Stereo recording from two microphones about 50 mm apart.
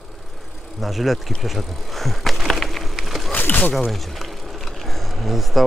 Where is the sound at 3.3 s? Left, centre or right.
Left.